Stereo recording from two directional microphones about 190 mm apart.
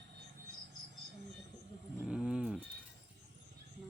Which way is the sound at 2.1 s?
5° right (ahead or behind).